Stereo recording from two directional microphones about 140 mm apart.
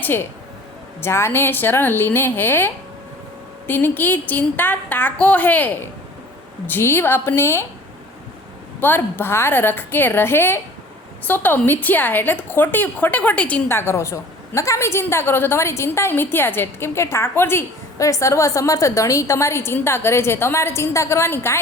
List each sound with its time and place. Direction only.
0.0 s a woman's voice: 15° left (ahead or behind)
8.8 s a woman's voice: 15° left (ahead or behind)